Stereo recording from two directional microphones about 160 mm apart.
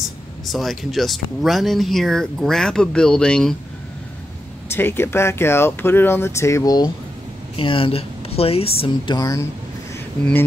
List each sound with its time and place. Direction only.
0.5 s speech: centre (ahead or behind)
4.6 s a woman's voice: 15° left (ahead or behind)